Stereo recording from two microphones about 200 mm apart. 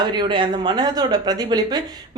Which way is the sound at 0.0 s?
20° right (ahead or behind).